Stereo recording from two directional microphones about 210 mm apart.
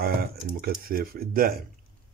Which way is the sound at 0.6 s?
45° right (ahead or behind).